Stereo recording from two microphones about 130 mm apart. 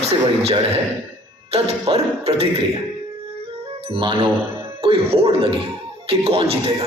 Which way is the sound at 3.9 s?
45° right (ahead or behind).